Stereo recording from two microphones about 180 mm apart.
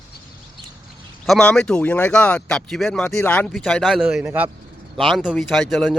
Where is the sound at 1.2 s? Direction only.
5° left (ahead or behind).